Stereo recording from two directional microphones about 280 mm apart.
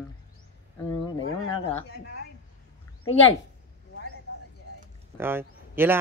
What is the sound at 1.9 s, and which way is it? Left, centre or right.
Speech, left.